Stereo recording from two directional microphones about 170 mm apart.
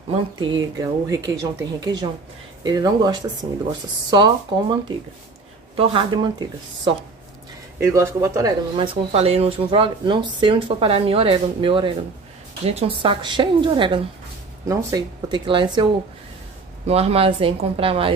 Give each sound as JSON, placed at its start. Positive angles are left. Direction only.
{"t": 0.1, "sound": "a woman's voice", "side_deg": -30}
{"t": 7.8, "sound": "a woman's voice", "side_deg": -15}
{"t": 14.7, "sound": "a woman's voice", "side_deg": -20}